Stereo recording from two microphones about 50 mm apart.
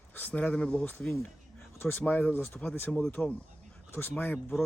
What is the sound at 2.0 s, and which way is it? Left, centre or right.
Speech, left.